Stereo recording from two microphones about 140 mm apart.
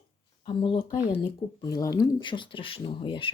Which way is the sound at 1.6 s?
25° left (ahead or behind).